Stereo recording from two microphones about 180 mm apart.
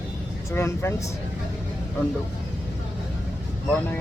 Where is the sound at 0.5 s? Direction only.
15° left (ahead or behind).